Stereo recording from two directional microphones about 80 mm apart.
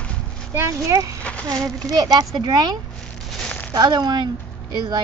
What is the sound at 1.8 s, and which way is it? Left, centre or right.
Speech, right.